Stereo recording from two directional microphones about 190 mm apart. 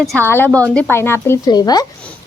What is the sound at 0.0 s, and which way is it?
A woman's voice, centre (ahead or behind).